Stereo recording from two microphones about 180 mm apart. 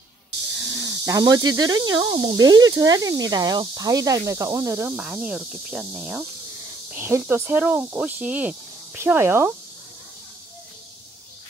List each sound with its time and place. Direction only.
0.7 s speech: 15° right (ahead or behind)